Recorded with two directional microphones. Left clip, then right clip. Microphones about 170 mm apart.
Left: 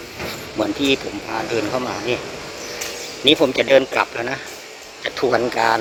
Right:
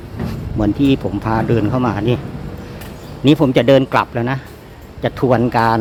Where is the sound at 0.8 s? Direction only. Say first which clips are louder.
Right 3 dB; 20° right (ahead or behind).